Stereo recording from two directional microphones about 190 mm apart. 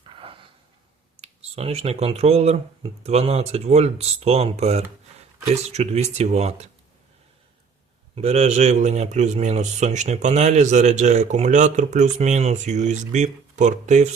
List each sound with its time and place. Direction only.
0.0 s a sound: 30° right (ahead or behind)
1.2 s speech: 35° right (ahead or behind)
8.1 s speech: 35° right (ahead or behind)